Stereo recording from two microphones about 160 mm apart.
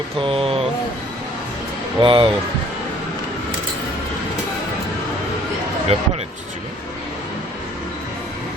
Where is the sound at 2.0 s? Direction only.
35° right (ahead or behind).